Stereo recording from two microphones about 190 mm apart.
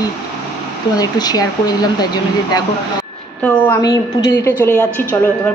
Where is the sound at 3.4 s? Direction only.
10° left (ahead or behind).